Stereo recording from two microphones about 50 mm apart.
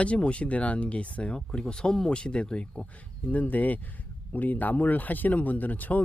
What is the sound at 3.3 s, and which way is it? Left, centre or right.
Speech, left.